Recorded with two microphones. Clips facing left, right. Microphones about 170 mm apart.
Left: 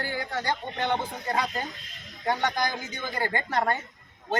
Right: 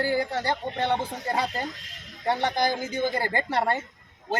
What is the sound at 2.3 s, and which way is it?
Speech, 30° right (ahead or behind).